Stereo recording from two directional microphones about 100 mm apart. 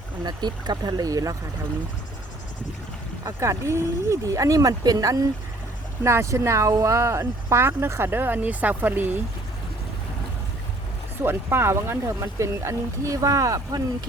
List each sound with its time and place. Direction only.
0.3 s speech: 45° right (ahead or behind)
3.2 s speech: 30° right (ahead or behind)
6.0 s speech: 25° right (ahead or behind)
11.2 s speech: 25° right (ahead or behind)